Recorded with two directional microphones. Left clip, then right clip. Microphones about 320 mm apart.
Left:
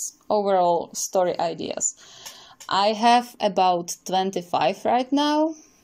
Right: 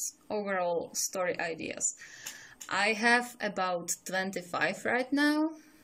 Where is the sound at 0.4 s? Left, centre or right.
Left.